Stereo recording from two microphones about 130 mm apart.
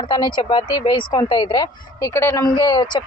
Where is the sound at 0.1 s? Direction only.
35° left (ahead or behind).